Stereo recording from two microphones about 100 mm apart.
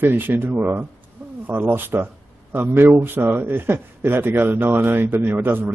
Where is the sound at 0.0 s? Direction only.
20° right (ahead or behind).